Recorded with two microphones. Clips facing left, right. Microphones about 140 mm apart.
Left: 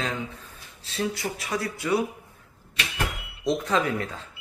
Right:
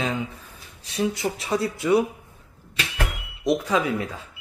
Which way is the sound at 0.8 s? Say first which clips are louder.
Right 4 dB; 20° right (ahead or behind).